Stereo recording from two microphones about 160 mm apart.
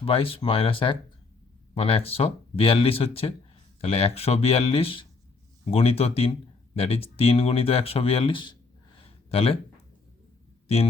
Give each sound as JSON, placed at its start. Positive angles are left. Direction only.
{"t": 0.0, "sound": "speech", "side_deg": 35}